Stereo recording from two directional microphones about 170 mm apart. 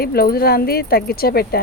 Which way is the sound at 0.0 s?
65° left (ahead or behind).